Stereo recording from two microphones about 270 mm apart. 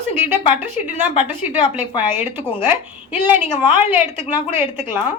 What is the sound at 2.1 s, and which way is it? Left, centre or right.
Speech, centre.